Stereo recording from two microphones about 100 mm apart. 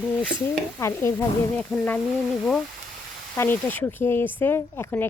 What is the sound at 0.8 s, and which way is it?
Speech, 25° left (ahead or behind).